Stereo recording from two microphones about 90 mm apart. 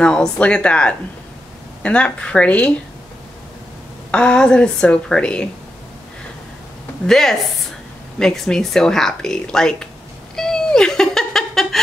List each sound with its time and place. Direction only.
0.0 s speech: 10° left (ahead or behind)
4.1 s speech: 10° left (ahead or behind)
7.1 s a woman's voice: 5° left (ahead or behind)
10.3 s cat: 5° left (ahead or behind)